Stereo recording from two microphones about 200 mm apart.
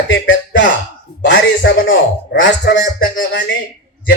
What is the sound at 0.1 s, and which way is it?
Speech, 70° left (ahead or behind).